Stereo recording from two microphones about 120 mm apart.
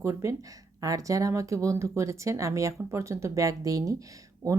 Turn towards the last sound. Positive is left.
turn(degrees=-30)  # may be behind; listen again after turning